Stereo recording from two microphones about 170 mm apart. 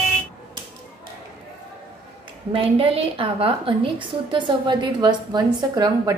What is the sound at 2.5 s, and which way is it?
A woman's voice, 35° right (ahead or behind).